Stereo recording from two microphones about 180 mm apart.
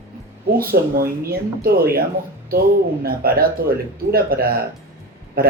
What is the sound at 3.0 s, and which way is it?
Speech, 55° right (ahead or behind).